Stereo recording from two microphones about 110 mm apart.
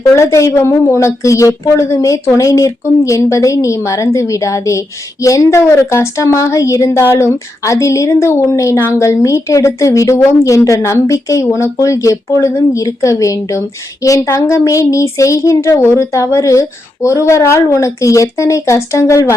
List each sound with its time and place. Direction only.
0.0 s a woman's voice: 30° left (ahead or behind)